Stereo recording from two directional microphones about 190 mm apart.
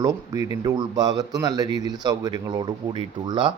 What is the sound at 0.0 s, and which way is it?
Speech, 20° right (ahead or behind).